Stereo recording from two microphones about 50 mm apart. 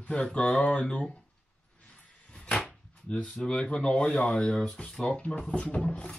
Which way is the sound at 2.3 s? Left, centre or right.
Centre.